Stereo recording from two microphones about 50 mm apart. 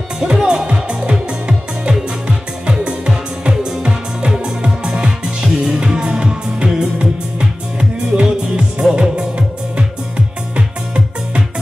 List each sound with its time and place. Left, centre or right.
0.2 s music: centre